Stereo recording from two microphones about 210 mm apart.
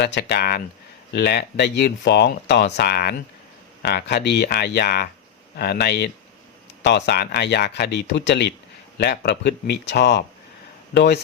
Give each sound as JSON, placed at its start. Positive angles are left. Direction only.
{"t": 0.0, "sound": "speech", "side_deg": 50}